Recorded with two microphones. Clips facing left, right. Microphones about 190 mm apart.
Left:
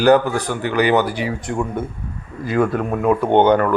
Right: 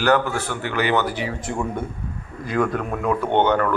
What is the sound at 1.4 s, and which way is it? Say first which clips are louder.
Speech: left 3 dB; centre (ahead or behind).